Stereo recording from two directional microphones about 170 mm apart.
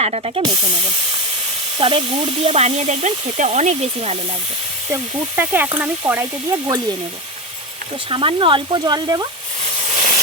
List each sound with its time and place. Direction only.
0.0 s speech: 40° right (ahead or behind)
1.8 s speech: 30° right (ahead or behind)
5.4 s speech: 10° right (ahead or behind)
8.1 s speech: 30° right (ahead or behind)
9.9 s steam: 45° right (ahead or behind)